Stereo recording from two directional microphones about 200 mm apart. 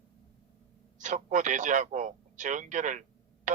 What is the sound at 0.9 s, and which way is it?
Speech, 40° right (ahead or behind).